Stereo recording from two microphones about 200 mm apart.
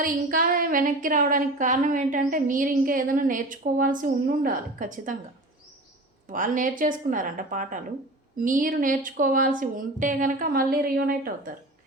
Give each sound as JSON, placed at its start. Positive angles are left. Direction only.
{"t": 0.0, "sound": "a woman's voice", "side_deg": -45}
{"t": 6.2, "sound": "a woman's voice", "side_deg": -40}